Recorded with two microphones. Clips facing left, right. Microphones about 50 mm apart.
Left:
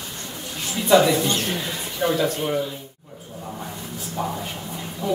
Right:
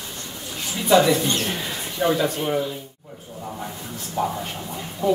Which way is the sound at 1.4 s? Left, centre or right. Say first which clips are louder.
Even; centre.